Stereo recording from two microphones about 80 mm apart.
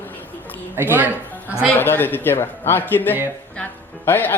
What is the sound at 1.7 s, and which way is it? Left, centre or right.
Speech, left.